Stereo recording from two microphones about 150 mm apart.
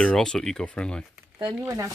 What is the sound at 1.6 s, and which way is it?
Speech, 20° right (ahead or behind).